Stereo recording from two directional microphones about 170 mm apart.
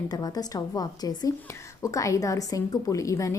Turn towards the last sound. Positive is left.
turn(degrees=20)  # may be behind; listen again after turning